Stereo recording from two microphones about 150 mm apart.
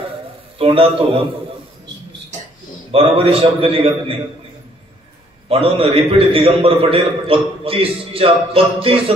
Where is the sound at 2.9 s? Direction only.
40° right (ahead or behind).